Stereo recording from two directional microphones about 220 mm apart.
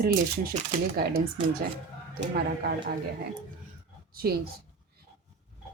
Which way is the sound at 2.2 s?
45° right (ahead or behind).